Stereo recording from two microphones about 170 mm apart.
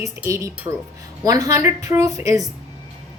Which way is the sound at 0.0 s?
20° right (ahead or behind).